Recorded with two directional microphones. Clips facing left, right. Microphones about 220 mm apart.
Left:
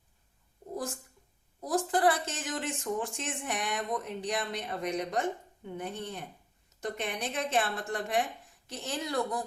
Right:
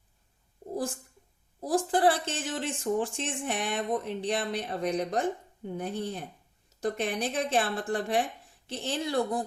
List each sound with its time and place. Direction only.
1.6 s speech: 30° right (ahead or behind)